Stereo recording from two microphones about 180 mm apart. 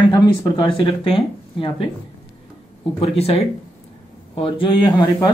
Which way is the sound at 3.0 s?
35° left (ahead or behind).